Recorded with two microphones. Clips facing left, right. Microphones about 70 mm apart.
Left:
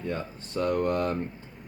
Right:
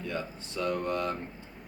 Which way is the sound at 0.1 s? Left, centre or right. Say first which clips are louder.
Left 4 dB; left.